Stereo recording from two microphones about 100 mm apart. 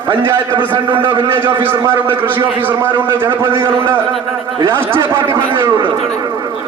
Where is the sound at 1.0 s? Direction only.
55° right (ahead or behind).